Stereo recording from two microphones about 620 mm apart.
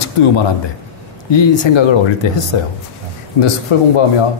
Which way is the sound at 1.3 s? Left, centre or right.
Left.